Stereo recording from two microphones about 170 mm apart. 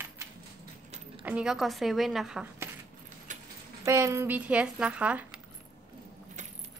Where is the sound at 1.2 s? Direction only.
5° right (ahead or behind).